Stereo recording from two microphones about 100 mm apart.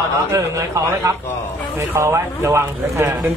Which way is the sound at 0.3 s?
30° right (ahead or behind).